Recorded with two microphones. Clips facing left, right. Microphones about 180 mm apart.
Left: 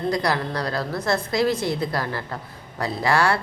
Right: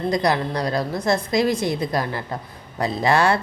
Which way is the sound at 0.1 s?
20° right (ahead or behind).